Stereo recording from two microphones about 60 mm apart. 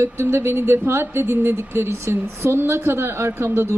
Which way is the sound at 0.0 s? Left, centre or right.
Right.